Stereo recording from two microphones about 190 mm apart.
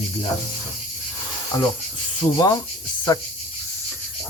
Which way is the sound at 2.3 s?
20° left (ahead or behind).